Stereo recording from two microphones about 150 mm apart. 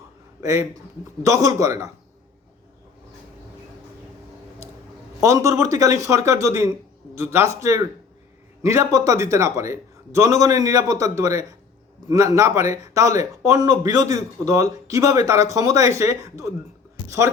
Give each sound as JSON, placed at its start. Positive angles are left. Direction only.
{"t": 0.4, "sound": "speech", "side_deg": -20}
{"t": 5.2, "sound": "speech", "side_deg": -20}